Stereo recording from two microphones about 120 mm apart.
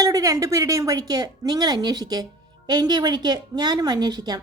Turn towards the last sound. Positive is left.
turn(degrees=-35)  # may be behind; listen again after turning